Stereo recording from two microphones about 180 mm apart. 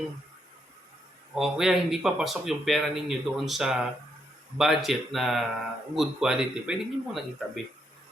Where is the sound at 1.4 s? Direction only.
5° right (ahead or behind).